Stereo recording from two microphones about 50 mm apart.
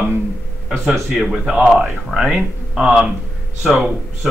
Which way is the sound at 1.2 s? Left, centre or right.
Centre.